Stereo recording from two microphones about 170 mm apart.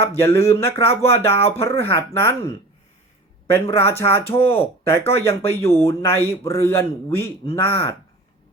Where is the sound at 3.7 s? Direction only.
15° left (ahead or behind).